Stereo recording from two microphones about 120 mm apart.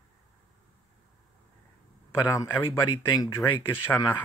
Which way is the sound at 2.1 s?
20° left (ahead or behind).